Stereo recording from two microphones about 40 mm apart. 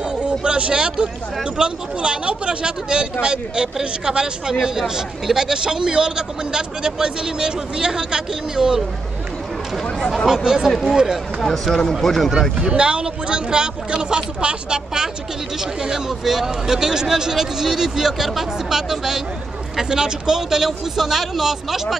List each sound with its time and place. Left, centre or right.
0.2 s a sound: right
0.7 s speech: right
9.9 s speech: centre
11.5 s speech: centre
12.5 s speech: right
15.8 s speech: centre